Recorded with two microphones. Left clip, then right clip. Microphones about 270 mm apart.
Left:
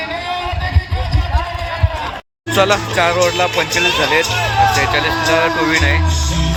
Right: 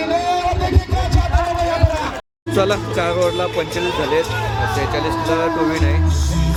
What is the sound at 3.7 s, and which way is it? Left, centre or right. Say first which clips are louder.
Speech: left 5 dB; right.